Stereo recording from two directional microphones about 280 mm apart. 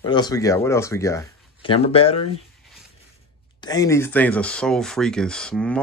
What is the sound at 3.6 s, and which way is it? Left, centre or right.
Speech, centre.